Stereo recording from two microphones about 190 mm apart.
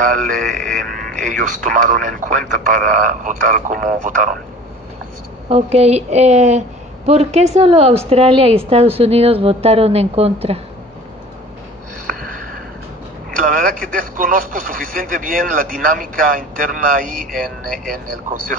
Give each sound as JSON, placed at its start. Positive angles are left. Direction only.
{"t": 0.0, "sound": "speech", "side_deg": -45}
{"t": 5.5, "sound": "a woman's voice", "side_deg": -35}
{"t": 13.4, "sound": "speech", "side_deg": -45}